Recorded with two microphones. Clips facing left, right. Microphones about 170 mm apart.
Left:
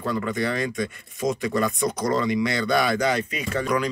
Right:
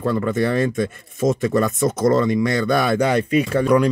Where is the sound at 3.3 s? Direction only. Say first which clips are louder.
Right 9 dB; 55° right (ahead or behind).